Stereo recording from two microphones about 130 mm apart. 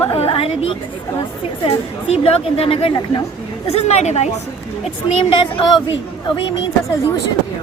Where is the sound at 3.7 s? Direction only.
60° left (ahead or behind).